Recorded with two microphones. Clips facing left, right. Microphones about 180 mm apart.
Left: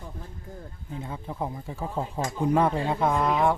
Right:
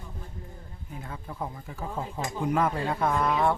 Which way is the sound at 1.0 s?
20° left (ahead or behind).